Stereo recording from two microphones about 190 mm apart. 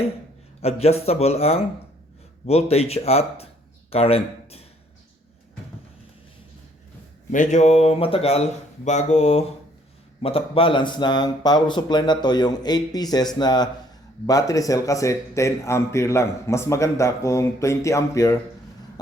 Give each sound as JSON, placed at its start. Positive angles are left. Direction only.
{"t": 0.6, "sound": "speech", "side_deg": 35}
{"t": 7.3, "sound": "a man's voice", "side_deg": 40}